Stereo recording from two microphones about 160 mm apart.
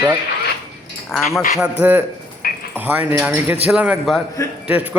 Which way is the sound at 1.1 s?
Centre (ahead or behind).